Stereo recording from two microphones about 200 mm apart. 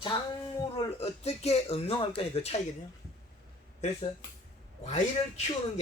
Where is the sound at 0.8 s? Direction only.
30° left (ahead or behind).